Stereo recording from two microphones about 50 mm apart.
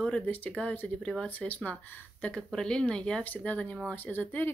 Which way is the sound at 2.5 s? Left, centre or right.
Centre.